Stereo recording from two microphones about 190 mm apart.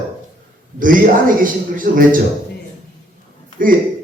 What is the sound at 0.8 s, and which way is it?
A man's voice, 45° right (ahead or behind).